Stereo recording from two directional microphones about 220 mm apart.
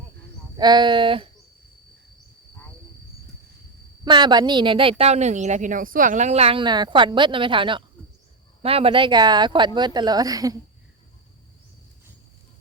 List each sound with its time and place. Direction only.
0.5 s speech: 20° right (ahead or behind)
4.0 s speech: 20° right (ahead or behind)